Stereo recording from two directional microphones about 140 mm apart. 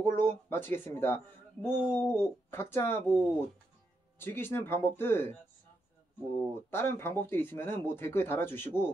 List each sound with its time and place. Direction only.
0.0 s speech: 15° left (ahead or behind)
6.5 s speech: 15° left (ahead or behind)